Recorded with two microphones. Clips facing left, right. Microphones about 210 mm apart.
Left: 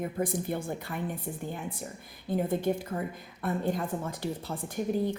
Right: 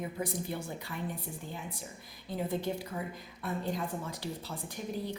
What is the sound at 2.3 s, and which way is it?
Speech, 50° left (ahead or behind).